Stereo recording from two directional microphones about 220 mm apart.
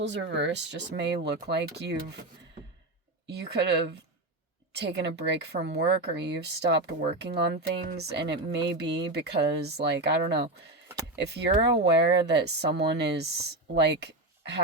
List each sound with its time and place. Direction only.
0.0 s speech: 55° right (ahead or behind)
3.2 s speech: 50° right (ahead or behind)